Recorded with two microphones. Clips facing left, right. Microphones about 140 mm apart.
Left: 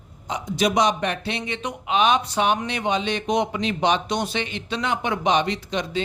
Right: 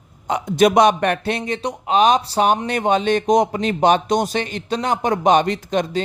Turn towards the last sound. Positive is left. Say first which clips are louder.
# right 5 dB
turn(degrees=-45)  # may be behind; listen again after turning